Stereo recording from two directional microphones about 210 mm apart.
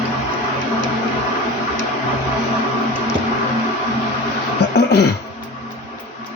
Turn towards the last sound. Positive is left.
turn(degrees=55)  # may be behind; listen again after turning